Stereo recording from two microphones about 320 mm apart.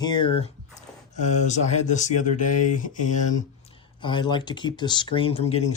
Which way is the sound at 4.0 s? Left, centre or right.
Centre.